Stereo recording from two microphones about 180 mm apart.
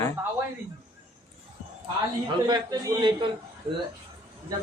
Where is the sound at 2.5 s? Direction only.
20° right (ahead or behind).